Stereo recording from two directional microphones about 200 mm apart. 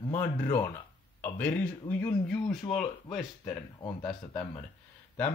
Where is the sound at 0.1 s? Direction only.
10° left (ahead or behind).